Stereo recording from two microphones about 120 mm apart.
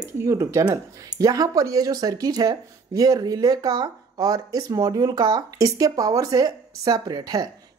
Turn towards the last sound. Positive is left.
turn(degrees=-35)  # may be behind; listen again after turning